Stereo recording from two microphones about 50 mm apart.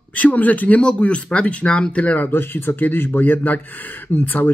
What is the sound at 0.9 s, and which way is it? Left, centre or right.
Speech, left.